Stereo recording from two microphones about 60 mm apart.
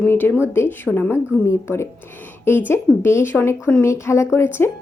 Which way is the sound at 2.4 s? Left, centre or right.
Left.